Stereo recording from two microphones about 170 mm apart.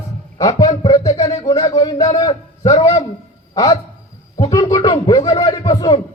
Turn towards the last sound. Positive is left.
turn(degrees=25)  # may be behind; listen again after turning